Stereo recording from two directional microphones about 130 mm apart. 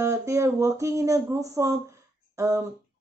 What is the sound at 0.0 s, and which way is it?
Speech, 25° right (ahead or behind).